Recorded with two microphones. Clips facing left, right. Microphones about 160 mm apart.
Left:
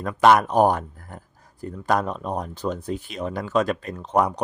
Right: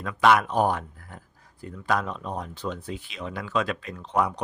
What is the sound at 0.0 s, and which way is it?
Speech, 45° left (ahead or behind).